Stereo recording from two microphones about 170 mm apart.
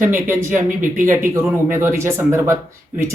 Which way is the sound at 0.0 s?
15° right (ahead or behind).